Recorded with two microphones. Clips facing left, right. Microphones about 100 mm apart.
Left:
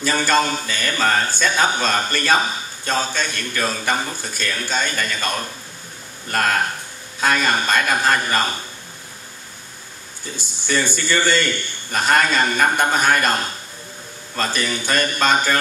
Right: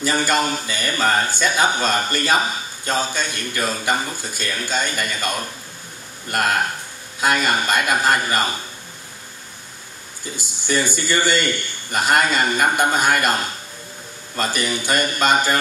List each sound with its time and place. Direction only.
0.0 s a man's voice: 15° right (ahead or behind)
10.3 s a man's voice: 15° right (ahead or behind)